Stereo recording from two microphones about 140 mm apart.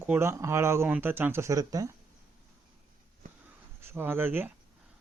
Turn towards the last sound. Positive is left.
turn(degrees=-15)  # may be behind; listen again after turning